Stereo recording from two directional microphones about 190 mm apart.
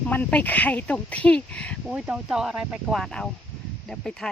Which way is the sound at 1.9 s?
5° right (ahead or behind).